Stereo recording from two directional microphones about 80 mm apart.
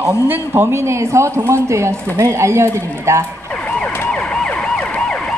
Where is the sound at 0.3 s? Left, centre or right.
Right.